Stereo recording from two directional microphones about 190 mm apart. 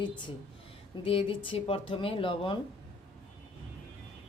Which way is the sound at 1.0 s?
30° left (ahead or behind).